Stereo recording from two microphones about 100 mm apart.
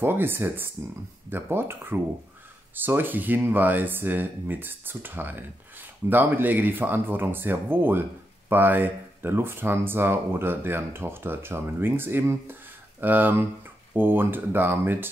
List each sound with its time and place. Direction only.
0.0 s speech: 25° right (ahead or behind)